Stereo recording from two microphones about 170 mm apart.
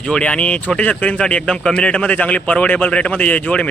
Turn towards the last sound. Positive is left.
turn(degrees=10)  # may be behind; listen again after turning